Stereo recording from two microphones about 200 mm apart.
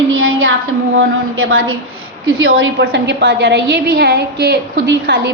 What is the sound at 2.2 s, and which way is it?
A woman's voice, 75° right (ahead or behind).